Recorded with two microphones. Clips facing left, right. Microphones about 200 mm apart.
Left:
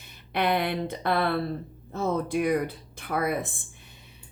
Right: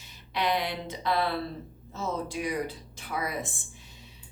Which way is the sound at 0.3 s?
55° left (ahead or behind).